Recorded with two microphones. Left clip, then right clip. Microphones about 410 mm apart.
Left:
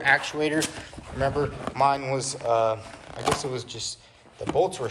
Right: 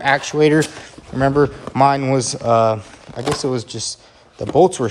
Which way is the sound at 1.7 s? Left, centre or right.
Centre.